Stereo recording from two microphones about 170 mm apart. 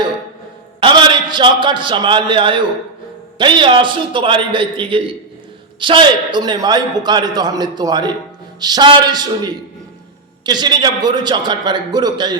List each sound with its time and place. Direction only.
0.8 s a man's voice: 30° right (ahead or behind)